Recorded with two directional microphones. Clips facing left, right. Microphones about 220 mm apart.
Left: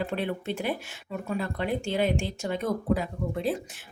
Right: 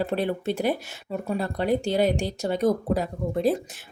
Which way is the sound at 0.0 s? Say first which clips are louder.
Right 4 dB; 40° right (ahead or behind).